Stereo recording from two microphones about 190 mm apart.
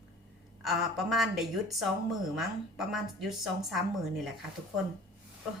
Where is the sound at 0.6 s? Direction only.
Centre (ahead or behind).